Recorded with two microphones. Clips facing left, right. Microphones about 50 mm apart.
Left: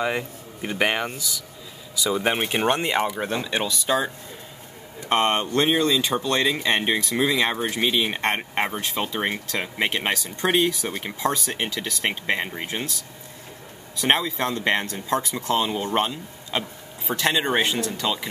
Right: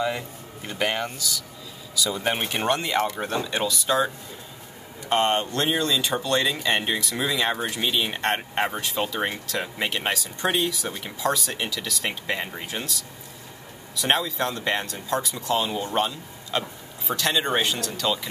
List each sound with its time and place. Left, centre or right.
0.0 s speech: left
5.0 s speech: left
16.5 s speech: centre